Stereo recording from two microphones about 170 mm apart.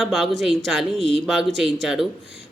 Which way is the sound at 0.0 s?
Centre (ahead or behind).